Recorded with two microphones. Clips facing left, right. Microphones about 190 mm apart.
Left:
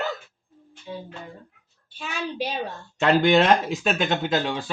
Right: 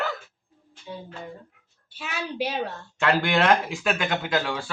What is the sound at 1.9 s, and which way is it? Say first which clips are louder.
Speech: left 2 dB; 5° right (ahead or behind).